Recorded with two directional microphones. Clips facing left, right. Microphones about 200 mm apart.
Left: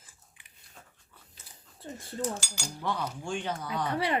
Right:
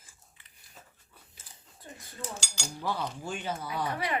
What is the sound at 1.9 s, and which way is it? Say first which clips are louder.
Speech: left 8 dB; 35° left (ahead or behind).